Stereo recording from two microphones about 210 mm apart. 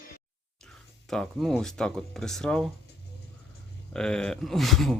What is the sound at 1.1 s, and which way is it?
Speech, centre (ahead or behind).